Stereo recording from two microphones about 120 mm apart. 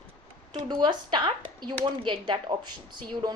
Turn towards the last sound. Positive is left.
turn(degrees=-40)  # may be behind; listen again after turning